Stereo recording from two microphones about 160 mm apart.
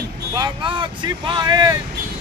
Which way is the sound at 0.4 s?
30° right (ahead or behind).